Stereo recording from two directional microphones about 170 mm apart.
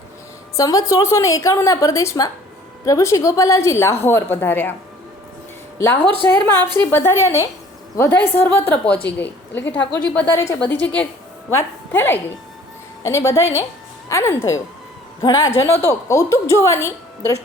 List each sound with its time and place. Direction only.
0.5 s a woman's voice: 20° left (ahead or behind)
6.2 s a woman's voice: 10° left (ahead or behind)